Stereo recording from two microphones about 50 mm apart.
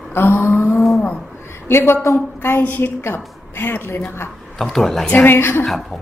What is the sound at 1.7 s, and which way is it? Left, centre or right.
A woman's voice, left.